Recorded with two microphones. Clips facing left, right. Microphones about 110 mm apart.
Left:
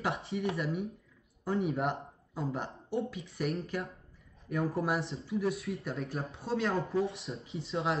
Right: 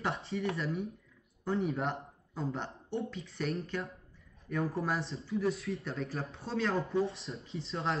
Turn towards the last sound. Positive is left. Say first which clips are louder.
# left 2 dB
turn(degrees=0)  # may be behind; listen again after turning